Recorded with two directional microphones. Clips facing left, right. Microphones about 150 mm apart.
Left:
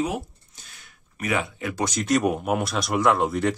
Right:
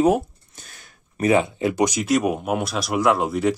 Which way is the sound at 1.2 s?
25° right (ahead or behind).